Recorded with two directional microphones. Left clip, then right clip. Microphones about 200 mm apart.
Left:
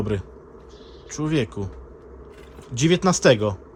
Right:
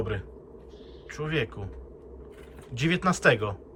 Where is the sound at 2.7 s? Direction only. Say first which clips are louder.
Left 6 dB; 30° left (ahead or behind).